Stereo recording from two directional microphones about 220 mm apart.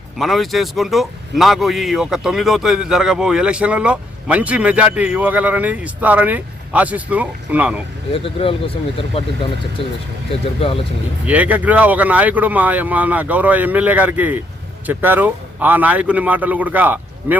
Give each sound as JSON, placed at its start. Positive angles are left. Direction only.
{"t": 0.2, "sound": "a man's voice", "side_deg": 0}
{"t": 8.1, "sound": "speech", "side_deg": 25}
{"t": 11.3, "sound": "speech", "side_deg": -5}